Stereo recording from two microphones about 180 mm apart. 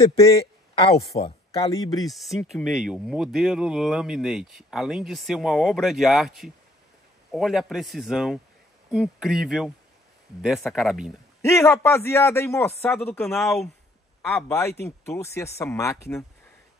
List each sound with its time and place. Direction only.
0.7 s speech: 30° left (ahead or behind)
1.6 s speech: 20° left (ahead or behind)
2.0 s speech: centre (ahead or behind)
11.4 s a man's voice: 15° left (ahead or behind)
14.2 s a man's voice: 15° left (ahead or behind)